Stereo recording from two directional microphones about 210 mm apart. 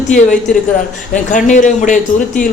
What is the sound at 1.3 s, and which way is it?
A man's voice, 35° left (ahead or behind).